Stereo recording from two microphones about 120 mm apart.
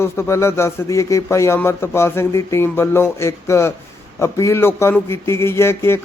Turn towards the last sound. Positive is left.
turn(degrees=20)  # may be behind; listen again after turning